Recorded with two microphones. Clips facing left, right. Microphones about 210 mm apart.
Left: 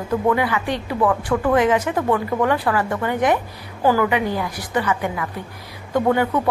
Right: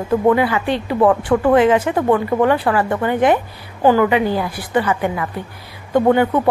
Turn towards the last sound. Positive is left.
turn(degrees=-25)  # may be behind; listen again after turning